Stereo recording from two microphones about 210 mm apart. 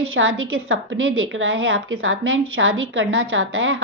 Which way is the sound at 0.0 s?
75° right (ahead or behind).